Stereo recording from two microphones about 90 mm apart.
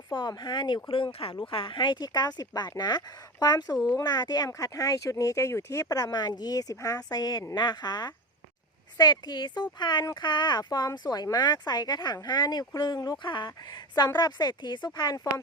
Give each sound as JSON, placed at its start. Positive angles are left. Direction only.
{"t": 0.1, "sound": "speech", "side_deg": 55}
{"t": 0.9, "sound": "speech", "side_deg": 80}